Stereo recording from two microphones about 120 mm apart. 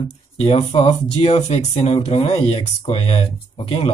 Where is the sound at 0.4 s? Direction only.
60° left (ahead or behind).